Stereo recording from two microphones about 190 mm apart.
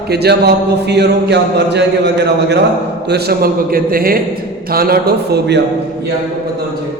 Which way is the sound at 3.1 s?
55° right (ahead or behind).